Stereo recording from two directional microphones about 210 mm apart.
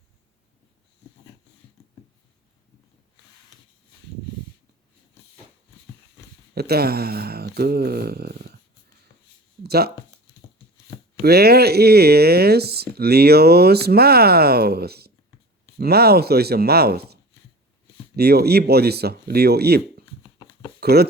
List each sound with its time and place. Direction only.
6.5 s speech: 50° right (ahead or behind)
9.6 s speech: 50° right (ahead or behind)
11.2 s speech: 50° right (ahead or behind)
18.2 s speech: 50° right (ahead or behind)
20.8 s speech: 50° right (ahead or behind)